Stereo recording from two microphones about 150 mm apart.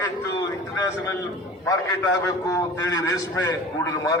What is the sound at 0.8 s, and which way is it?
A man's voice, 20° left (ahead or behind).